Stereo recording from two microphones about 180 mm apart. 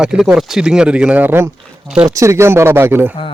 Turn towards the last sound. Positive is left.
turn(degrees=-10)  # may be behind; listen again after turning